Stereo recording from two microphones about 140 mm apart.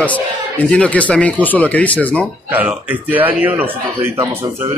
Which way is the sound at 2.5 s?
10° right (ahead or behind).